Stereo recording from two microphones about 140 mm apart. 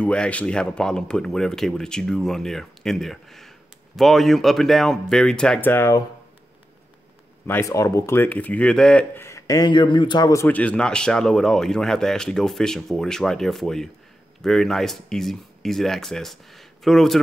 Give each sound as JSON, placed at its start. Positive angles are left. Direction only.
{"t": 0.0, "sound": "speech", "side_deg": 10}
{"t": 7.4, "sound": "speech", "side_deg": 20}
{"t": 10.5, "sound": "speech", "side_deg": 10}